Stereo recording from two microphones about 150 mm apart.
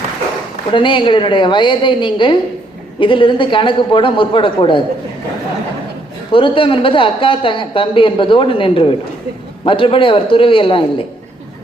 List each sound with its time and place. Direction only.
0.7 s a man's voice: 35° left (ahead or behind)
6.3 s a man's voice: 35° left (ahead or behind)